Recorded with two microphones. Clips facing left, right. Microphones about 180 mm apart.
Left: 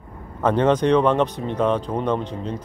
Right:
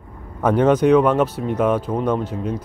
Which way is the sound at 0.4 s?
10° right (ahead or behind).